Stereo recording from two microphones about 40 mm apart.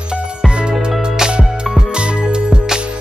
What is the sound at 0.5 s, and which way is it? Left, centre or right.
Music, right.